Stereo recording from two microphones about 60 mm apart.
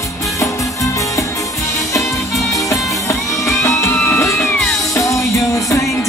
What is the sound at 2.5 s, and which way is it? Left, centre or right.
Music, left.